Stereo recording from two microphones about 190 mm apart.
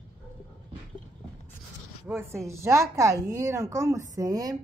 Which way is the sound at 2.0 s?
15° right (ahead or behind).